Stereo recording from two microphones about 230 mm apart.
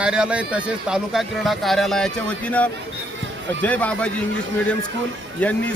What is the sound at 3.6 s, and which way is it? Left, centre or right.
Speech, centre.